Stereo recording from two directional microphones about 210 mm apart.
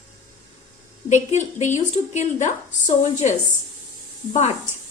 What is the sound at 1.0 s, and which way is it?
A woman's voice, 35° left (ahead or behind).